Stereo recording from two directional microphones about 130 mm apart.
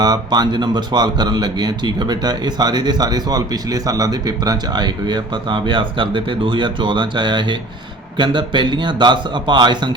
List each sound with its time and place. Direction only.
0.0 s speech: 30° right (ahead or behind)